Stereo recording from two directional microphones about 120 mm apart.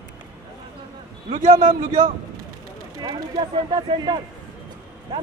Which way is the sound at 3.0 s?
40° right (ahead or behind).